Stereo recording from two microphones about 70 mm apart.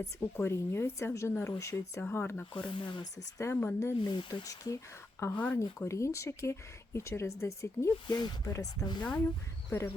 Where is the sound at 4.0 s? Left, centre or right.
Left.